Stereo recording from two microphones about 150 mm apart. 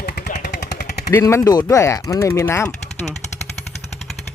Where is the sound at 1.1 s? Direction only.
15° left (ahead or behind).